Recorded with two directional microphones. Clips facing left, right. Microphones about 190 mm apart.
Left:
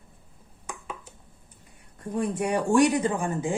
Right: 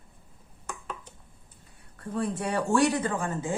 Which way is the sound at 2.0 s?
15° left (ahead or behind).